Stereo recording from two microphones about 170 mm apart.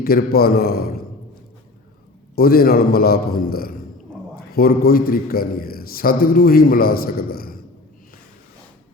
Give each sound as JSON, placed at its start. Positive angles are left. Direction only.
{"t": 0.0, "sound": "a man's voice", "side_deg": 65}
{"t": 2.3, "sound": "a man's voice", "side_deg": 60}